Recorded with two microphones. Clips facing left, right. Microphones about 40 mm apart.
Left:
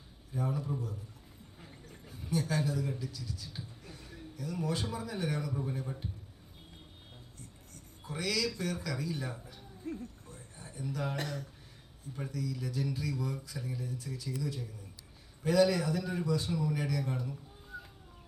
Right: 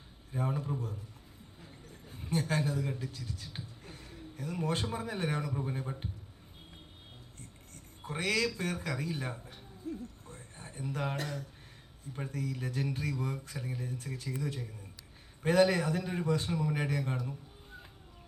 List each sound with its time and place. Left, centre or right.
0.3 s speech: right
2.0 s a man's voice: right
5.5 s a man's voice: right
8.0 s speech: right
10.0 s a sound: right
12.1 s speech: right